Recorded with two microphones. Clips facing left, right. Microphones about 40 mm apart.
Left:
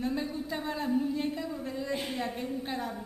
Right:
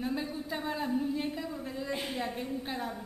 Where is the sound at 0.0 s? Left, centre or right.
Centre.